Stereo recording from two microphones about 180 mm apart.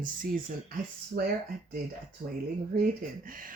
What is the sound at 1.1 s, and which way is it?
Speech, 60° right (ahead or behind).